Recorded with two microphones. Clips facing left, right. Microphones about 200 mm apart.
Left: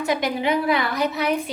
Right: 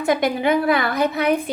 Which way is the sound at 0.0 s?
50° right (ahead or behind).